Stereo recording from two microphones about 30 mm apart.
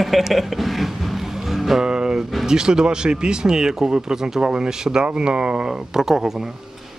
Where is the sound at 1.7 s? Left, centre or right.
Right.